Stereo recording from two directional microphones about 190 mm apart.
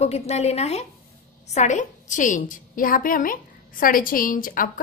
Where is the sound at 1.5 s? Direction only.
40° left (ahead or behind).